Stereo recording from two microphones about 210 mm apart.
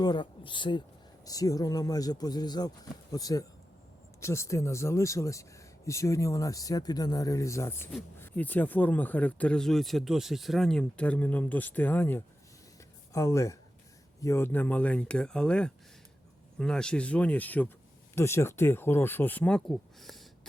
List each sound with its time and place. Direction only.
0.0 s speech: 20° left (ahead or behind); by 20.5 s centre (ahead or behind)